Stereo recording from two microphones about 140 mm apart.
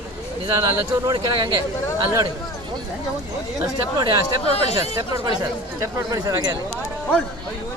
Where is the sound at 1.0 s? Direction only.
30° right (ahead or behind).